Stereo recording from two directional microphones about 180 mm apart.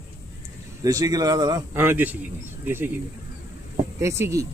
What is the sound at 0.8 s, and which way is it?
Speech, 20° right (ahead or behind).